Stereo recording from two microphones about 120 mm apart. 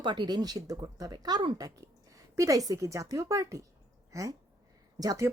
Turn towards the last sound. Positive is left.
turn(degrees=-30)  # may be behind; listen again after turning